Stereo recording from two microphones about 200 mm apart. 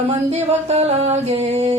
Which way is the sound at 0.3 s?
30° right (ahead or behind).